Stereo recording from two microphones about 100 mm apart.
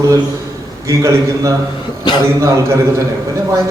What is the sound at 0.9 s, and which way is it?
A man's voice, 30° right (ahead or behind).